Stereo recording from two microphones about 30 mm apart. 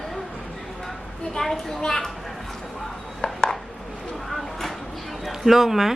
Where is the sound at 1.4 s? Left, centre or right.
Centre.